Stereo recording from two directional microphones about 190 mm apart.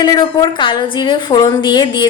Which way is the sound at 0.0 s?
25° left (ahead or behind).